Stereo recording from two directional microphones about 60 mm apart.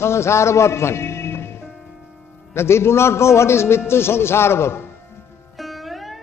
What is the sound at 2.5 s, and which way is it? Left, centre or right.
A man's voice, left.